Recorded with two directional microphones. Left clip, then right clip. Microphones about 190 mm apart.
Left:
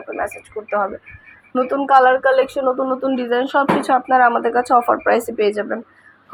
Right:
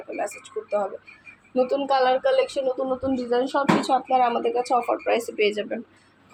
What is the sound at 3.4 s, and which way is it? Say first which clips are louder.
Speech: left 6 dB; 20° left (ahead or behind).